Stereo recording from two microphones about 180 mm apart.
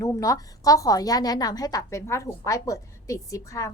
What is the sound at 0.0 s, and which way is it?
A woman's voice, 20° left (ahead or behind).